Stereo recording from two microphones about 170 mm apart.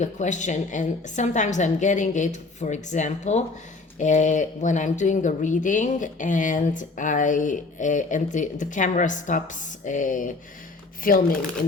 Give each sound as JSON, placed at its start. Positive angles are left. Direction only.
{"t": 0.0, "sound": "speech", "side_deg": 45}